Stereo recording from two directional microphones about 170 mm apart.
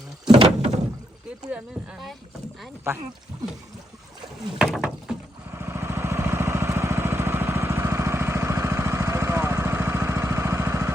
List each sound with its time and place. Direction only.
0.3 s door: 40° right (ahead or behind)
1.5 s speech: 5° right (ahead or behind)
4.5 s a sound: 5° right (ahead or behind)
5.5 s vehicle: 15° right (ahead or behind)